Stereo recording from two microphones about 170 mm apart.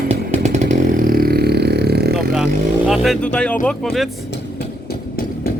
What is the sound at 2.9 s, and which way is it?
Speech, 5° left (ahead or behind).